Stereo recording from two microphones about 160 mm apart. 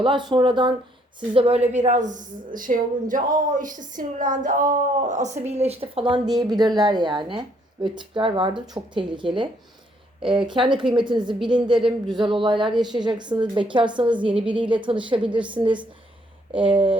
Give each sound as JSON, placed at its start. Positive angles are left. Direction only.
{"t": 0.0, "sound": "a woman's voice", "side_deg": -30}
{"t": 11.8, "sound": "speech", "side_deg": 0}
{"t": 12.2, "sound": "a woman's voice", "side_deg": -30}